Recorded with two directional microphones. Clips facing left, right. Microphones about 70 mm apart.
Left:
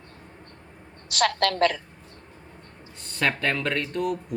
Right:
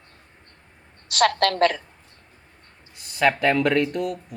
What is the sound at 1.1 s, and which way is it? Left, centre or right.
Speech, right.